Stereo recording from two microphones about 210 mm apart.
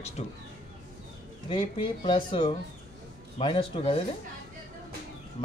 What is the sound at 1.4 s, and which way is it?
Speech, 25° left (ahead or behind).